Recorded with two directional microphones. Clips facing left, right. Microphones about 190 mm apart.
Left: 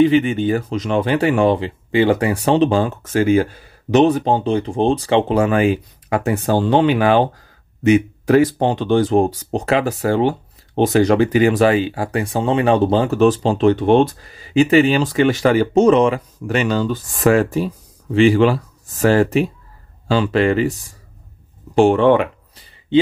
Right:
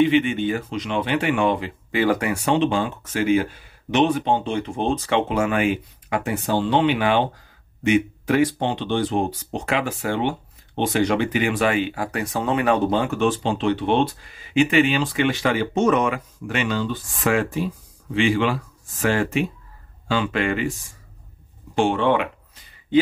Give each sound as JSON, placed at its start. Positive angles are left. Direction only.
{"t": 0.0, "sound": "speech", "side_deg": 40}
{"t": 21.7, "sound": "speech", "side_deg": 40}